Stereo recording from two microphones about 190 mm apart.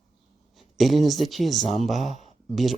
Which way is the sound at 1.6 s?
35° left (ahead or behind).